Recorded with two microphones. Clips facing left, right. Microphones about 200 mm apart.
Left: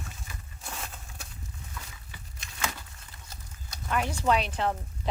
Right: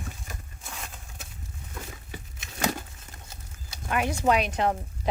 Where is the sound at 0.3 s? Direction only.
45° right (ahead or behind).